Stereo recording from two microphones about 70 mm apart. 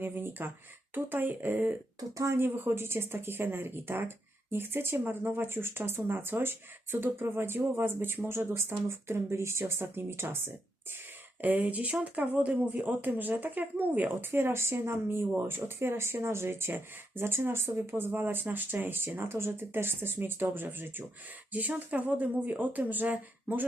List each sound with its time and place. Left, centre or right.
0.0 s speech: right
2.0 s speech: right
2.3 s speech: right